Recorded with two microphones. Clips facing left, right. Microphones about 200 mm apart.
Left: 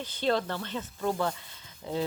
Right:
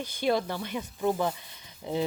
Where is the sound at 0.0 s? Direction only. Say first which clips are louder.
Right 1 dB; 10° right (ahead or behind).